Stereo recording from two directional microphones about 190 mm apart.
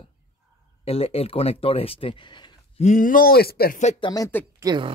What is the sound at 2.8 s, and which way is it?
Speech, 40° left (ahead or behind).